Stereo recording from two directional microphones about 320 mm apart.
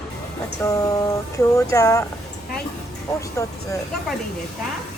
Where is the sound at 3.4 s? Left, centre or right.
Centre.